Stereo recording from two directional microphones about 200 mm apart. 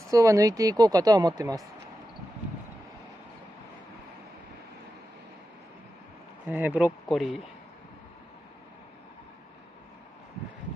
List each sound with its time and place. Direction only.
0.1 s a woman's voice: 15° right (ahead or behind)
6.4 s a woman's voice: 10° right (ahead or behind)